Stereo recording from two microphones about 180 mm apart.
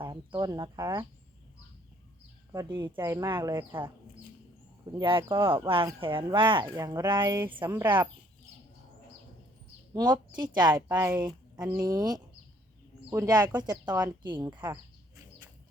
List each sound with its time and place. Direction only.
0.1 s speech: 25° right (ahead or behind)
2.5 s speech: 20° right (ahead or behind)
3.5 s speech: 10° right (ahead or behind)
4.9 s speech: 30° right (ahead or behind)
6.7 s speech: 15° right (ahead or behind)
9.9 s speech: 20° right (ahead or behind)